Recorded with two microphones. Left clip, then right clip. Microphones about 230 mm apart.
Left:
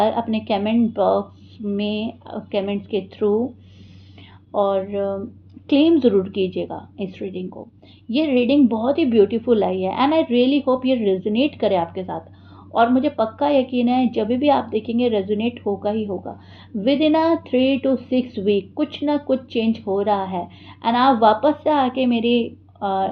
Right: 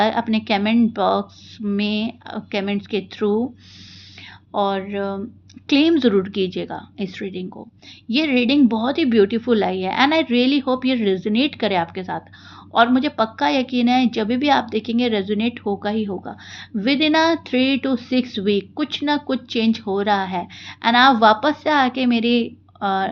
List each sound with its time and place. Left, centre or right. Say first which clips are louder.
0.0 s a woman's voice: even; right
4.5 s a woman's voice: left 2 dB; right